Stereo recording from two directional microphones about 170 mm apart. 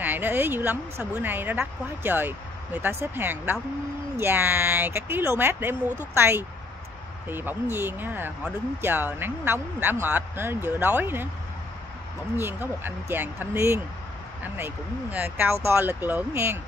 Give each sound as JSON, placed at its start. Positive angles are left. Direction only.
{"t": 0.0, "sound": "speech", "side_deg": -10}
{"t": 12.4, "sound": "speech", "side_deg": -10}